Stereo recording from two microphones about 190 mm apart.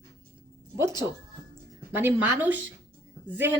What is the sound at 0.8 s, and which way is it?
A woman's voice, 15° right (ahead or behind).